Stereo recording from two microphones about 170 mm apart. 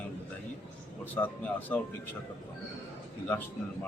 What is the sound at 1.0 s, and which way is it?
Speech, 10° left (ahead or behind).